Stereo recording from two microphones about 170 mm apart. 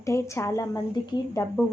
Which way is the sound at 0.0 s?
15° left (ahead or behind).